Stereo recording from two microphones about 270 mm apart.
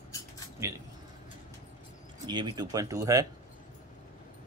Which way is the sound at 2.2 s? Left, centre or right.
Centre.